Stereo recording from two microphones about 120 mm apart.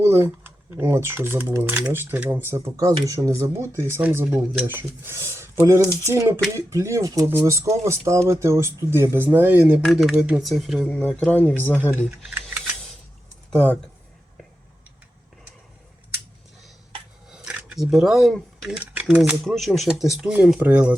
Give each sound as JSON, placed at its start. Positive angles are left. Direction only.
{"t": 0.0, "sound": "speech", "side_deg": -20}
{"t": 9.8, "sound": "speech", "side_deg": 0}
{"t": 10.8, "sound": "speech", "side_deg": 10}
{"t": 17.2, "sound": "a sound", "side_deg": -5}
{"t": 18.8, "sound": "speech", "side_deg": -15}
{"t": 19.2, "sound": "speech", "side_deg": 0}